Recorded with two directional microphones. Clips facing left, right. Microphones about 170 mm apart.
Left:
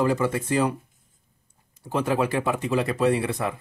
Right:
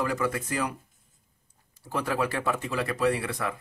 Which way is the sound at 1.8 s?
20° left (ahead or behind).